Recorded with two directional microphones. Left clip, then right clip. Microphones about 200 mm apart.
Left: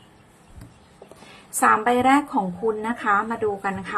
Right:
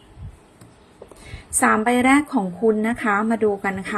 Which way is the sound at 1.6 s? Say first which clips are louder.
Even; 20° right (ahead or behind).